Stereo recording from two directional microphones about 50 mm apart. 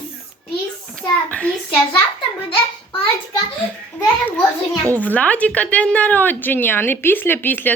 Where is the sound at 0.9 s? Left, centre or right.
Left.